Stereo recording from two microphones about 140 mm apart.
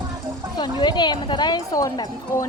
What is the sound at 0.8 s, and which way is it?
Speech, 30° left (ahead or behind).